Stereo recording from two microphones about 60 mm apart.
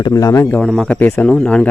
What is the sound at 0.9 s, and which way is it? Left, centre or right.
Speech, centre.